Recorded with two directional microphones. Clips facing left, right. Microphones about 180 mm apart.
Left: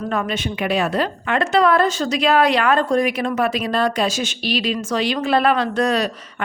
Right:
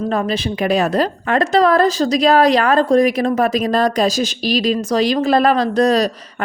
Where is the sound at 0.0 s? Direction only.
35° right (ahead or behind).